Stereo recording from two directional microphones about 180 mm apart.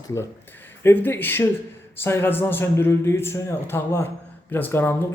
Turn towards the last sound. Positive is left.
turn(degrees=10)  # may be behind; listen again after turning